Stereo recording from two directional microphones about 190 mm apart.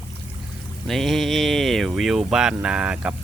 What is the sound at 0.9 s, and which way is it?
Speech, centre (ahead or behind).